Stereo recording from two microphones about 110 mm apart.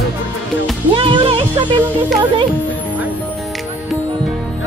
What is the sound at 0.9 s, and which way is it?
Music, 50° right (ahead or behind).